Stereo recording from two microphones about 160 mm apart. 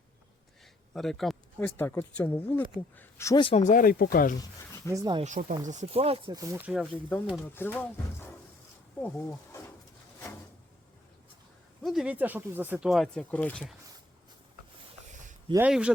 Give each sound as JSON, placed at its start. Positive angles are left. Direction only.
{"t": 0.6, "sound": "a sound", "side_deg": 0}
{"t": 1.5, "sound": "speech", "side_deg": 15}
{"t": 3.4, "sound": "speech", "side_deg": 45}
{"t": 4.4, "sound": "speech", "side_deg": 20}
{"t": 4.9, "sound": "speech", "side_deg": -25}
{"t": 5.2, "sound": "speech", "side_deg": -50}
{"t": 6.3, "sound": "speech", "side_deg": -20}
{"t": 6.6, "sound": "speech", "side_deg": -10}
{"t": 7.4, "sound": "speech", "side_deg": 15}
{"t": 9.0, "sound": "wild animals", "side_deg": 15}
{"t": 11.8, "sound": "speech", "side_deg": 0}
{"t": 12.9, "sound": "speech", "side_deg": 0}
{"t": 15.5, "sound": "speech", "side_deg": -10}